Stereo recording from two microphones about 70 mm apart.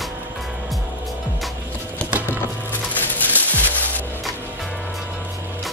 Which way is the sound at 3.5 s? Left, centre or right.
Left.